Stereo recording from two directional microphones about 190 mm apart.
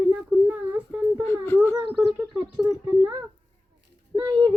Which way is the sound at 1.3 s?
10° left (ahead or behind).